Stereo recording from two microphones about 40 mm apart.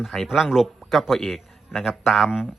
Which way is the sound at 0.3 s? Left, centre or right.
Centre.